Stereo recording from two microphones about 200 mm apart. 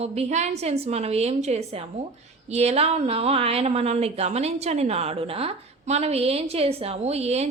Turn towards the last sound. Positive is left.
turn(degrees=-30)  # may be behind; listen again after turning